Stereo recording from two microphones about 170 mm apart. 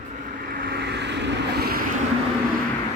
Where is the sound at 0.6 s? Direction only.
75° right (ahead or behind).